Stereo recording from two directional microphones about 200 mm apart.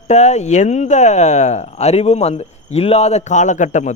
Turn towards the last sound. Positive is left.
turn(degrees=35)  # may be behind; listen again after turning